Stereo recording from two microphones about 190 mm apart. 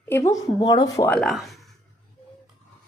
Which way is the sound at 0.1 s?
15° left (ahead or behind).